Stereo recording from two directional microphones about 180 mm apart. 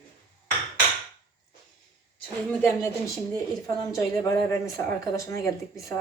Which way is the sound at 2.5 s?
15° left (ahead or behind).